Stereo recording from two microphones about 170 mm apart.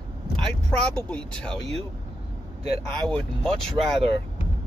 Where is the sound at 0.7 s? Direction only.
5° left (ahead or behind).